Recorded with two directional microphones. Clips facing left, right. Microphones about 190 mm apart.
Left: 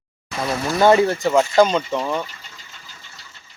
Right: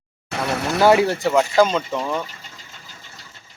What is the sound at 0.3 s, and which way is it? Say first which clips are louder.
Vehicle: even; 65° right (ahead or behind).